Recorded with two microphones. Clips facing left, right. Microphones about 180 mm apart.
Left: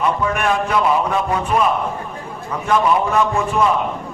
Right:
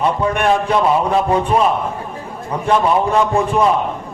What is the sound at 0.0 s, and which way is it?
A man's voice, 30° right (ahead or behind).